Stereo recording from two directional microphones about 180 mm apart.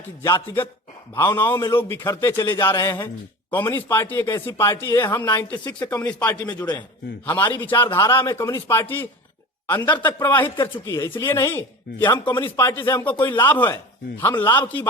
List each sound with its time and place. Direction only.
0.2 s speech: 15° left (ahead or behind)
7.3 s speech: 10° left (ahead or behind)